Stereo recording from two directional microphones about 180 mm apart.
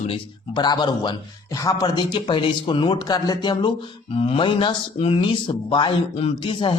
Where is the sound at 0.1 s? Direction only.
25° left (ahead or behind).